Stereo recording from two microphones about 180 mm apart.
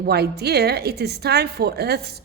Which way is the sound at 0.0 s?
65° right (ahead or behind).